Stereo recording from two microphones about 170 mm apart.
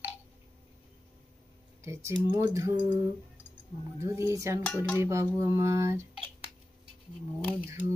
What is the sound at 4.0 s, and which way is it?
Speech, 15° right (ahead or behind).